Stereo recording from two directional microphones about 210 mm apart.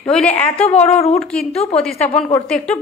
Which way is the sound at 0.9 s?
30° left (ahead or behind).